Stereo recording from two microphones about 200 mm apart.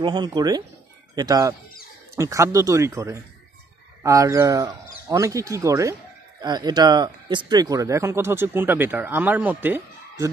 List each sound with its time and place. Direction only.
0.0 s speech: 20° right (ahead or behind)